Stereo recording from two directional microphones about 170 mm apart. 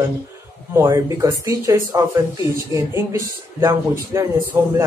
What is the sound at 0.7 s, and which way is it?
Speech, 20° right (ahead or behind).